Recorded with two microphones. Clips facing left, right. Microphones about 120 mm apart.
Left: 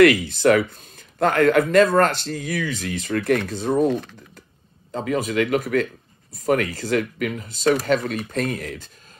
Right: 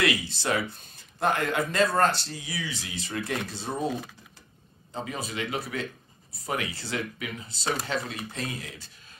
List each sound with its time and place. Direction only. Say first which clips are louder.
0.0 s speech: left 13 dB; 55° left (ahead or behind)
4.9 s speech: left 11 dB; 60° left (ahead or behind)
7.7 s speech: left 8 dB; 60° left (ahead or behind)